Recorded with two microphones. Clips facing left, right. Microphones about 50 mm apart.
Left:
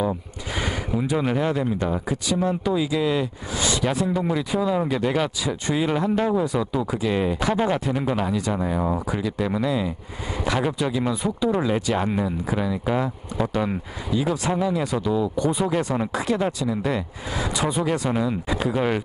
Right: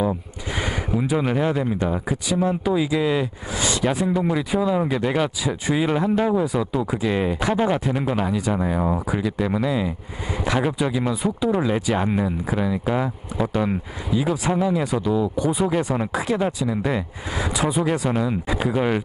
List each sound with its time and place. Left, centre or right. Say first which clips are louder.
0.6 s speech: right 1 dB; centre